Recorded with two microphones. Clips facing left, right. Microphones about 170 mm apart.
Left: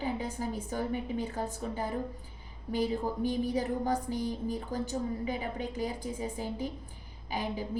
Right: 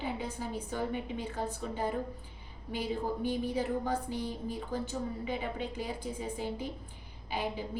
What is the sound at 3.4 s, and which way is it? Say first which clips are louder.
A woman's voice: left 2 dB; 40° left (ahead or behind).